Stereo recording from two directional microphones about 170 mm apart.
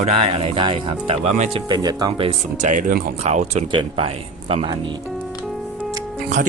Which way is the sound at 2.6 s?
55° right (ahead or behind).